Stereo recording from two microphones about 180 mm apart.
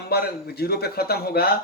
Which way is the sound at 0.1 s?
60° left (ahead or behind).